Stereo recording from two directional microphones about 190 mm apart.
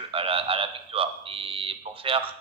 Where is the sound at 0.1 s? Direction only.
30° right (ahead or behind).